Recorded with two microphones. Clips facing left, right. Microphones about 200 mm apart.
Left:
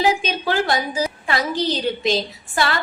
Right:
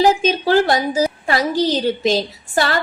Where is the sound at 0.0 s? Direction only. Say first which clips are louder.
Right 5 dB; 40° right (ahead or behind).